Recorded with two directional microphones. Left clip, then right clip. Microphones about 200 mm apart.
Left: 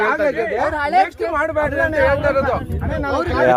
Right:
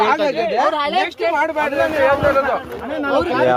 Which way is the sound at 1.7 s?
20° left (ahead or behind).